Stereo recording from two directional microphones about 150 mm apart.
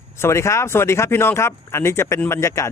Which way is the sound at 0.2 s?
20° left (ahead or behind).